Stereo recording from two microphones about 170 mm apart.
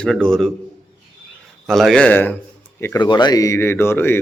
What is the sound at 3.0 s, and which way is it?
Speech, 25° left (ahead or behind).